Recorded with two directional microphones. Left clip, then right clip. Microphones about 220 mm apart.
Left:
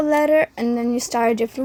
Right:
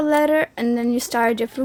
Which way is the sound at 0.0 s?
Centre (ahead or behind).